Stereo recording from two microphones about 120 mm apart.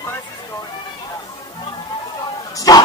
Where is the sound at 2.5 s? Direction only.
30° left (ahead or behind).